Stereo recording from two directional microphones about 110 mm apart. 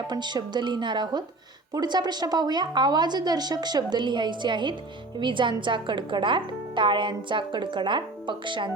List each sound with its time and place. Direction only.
0.1 s a woman's voice: 40° right (ahead or behind)